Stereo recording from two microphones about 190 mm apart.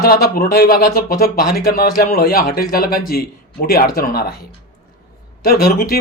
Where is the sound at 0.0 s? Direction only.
55° left (ahead or behind).